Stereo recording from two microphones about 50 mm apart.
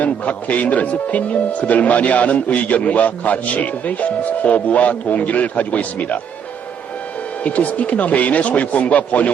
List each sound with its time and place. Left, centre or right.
0.0 s speech: left
7.4 s speech: left